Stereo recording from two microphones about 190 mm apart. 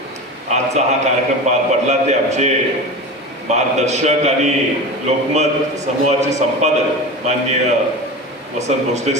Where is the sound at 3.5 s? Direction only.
35° right (ahead or behind).